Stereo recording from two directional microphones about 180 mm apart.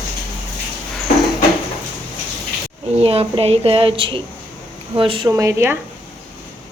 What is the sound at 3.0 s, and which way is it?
Speech, 30° right (ahead or behind).